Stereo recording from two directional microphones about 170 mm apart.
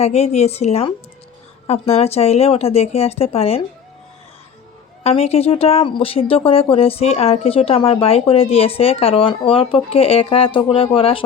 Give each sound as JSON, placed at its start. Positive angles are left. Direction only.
{"t": 0.0, "sound": "speech", "side_deg": 40}
{"t": 5.0, "sound": "speech", "side_deg": 35}